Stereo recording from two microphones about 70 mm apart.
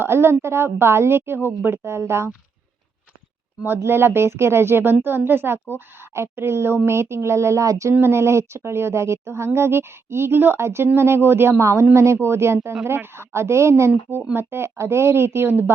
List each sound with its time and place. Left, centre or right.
0.0 s speech: right
3.8 s speech: right
7.9 s speech: right